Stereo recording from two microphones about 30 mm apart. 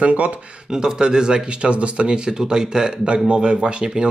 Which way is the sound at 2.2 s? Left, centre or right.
Right.